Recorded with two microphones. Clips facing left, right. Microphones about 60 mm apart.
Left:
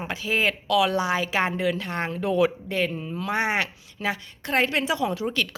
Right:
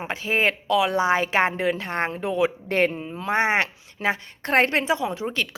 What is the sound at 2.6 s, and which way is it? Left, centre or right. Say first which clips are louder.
Speech: right 5 dB; right.